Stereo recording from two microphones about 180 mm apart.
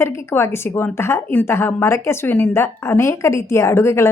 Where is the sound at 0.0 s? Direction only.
15° left (ahead or behind).